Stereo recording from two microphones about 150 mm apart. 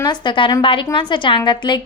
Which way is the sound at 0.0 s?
30° left (ahead or behind).